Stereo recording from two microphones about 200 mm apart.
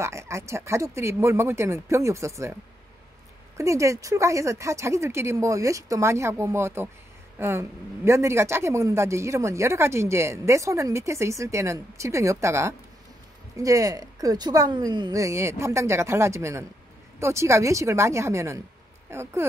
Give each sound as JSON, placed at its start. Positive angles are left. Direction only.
{"t": 0.0, "sound": "speech", "side_deg": -15}
{"t": 3.5, "sound": "speech", "side_deg": -15}